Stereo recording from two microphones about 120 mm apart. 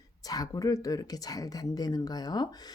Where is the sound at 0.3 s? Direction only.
30° left (ahead or behind).